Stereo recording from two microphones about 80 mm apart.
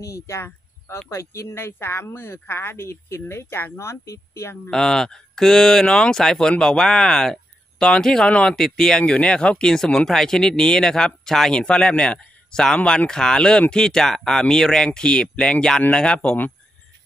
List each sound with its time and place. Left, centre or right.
0.0 s speech: left
4.6 s speech: centre